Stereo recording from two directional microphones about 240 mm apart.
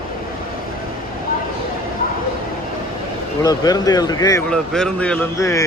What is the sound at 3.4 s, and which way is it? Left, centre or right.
Speech, centre.